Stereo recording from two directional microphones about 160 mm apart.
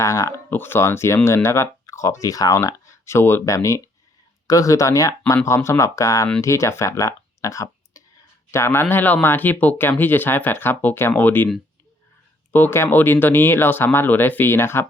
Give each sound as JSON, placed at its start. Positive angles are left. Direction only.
{"t": 0.0, "sound": "speech", "side_deg": 20}
{"t": 12.5, "sound": "speech", "side_deg": 15}